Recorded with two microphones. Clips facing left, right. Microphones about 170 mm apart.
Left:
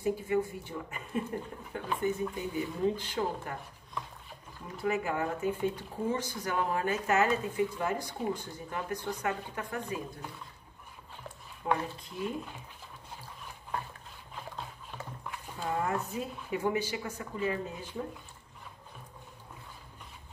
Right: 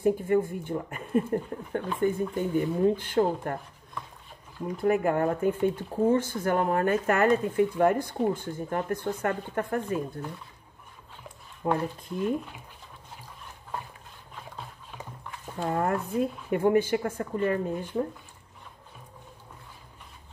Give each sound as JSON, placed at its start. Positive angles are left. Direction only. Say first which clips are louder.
{"t": 0.0, "sound": "speech", "louder": "right 6 dB", "side_deg": -50}
{"t": 4.8, "sound": "speech", "louder": "right 7 dB", "side_deg": -50}
{"t": 11.6, "sound": "speech", "louder": "right 4 dB", "side_deg": -45}
{"t": 15.6, "sound": "speech", "louder": "right 5 dB", "side_deg": -55}